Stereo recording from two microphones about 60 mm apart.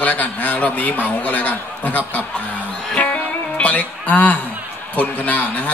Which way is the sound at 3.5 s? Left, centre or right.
Left.